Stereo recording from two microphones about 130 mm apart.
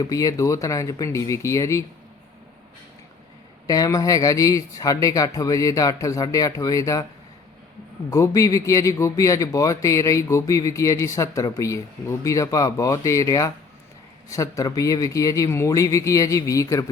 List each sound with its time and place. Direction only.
0.0 s speech: 25° left (ahead or behind)
3.7 s speech: 25° left (ahead or behind)
8.1 s speech: 25° left (ahead or behind)